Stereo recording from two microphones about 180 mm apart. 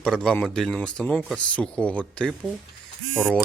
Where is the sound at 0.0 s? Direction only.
5° left (ahead or behind).